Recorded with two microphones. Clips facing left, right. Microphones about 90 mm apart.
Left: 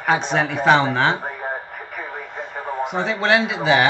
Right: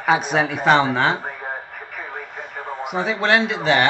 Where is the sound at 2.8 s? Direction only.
5° right (ahead or behind).